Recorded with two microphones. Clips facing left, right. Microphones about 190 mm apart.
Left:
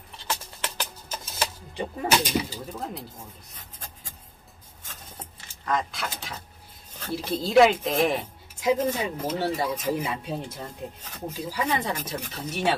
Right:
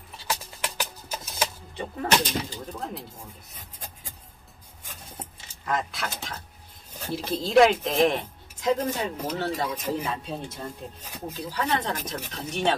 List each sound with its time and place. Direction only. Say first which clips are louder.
0.3 s music: right 1 dB; 10° right (ahead or behind)
1.2 s a sound: right 1 dB; centre (ahead or behind)
1.8 s speech: even; 10° left (ahead or behind)
5.7 s speech: left 1 dB; centre (ahead or behind)
11.3 s speech: even; 10° left (ahead or behind)